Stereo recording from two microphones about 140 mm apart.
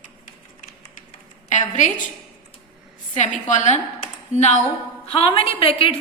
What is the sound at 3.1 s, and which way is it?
A woman's voice, 60° left (ahead or behind).